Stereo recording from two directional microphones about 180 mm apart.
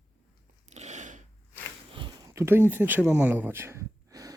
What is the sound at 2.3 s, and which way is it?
Speech, 15° right (ahead or behind).